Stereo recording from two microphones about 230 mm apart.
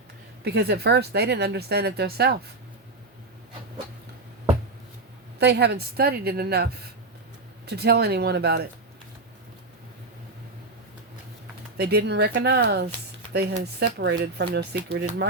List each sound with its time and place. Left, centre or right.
0.4 s speech: right
5.4 s speech: right
7.7 s speech: right
11.8 s speech: right